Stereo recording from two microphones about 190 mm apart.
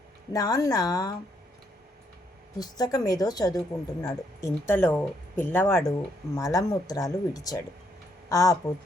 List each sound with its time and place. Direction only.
0.3 s a woman's voice: 20° left (ahead or behind)
2.6 s a woman's voice: 20° left (ahead or behind)